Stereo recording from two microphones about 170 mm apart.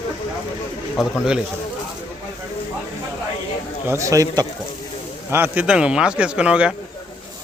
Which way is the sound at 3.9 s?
20° right (ahead or behind).